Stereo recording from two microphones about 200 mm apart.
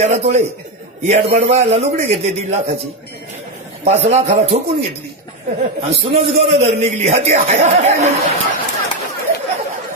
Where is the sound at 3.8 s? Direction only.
30° right (ahead or behind).